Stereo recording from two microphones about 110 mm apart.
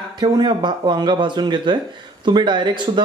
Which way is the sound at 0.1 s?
40° right (ahead or behind).